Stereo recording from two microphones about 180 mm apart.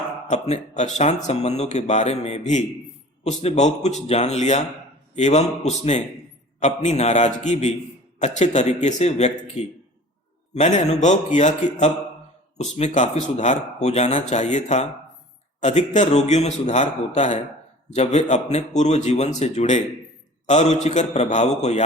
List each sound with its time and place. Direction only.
0.3 s speech: 40° left (ahead or behind)